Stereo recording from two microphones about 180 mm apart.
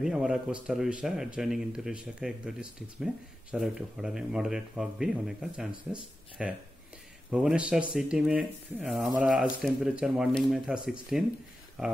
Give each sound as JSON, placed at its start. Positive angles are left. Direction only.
{"t": 0.0, "sound": "speech", "side_deg": -5}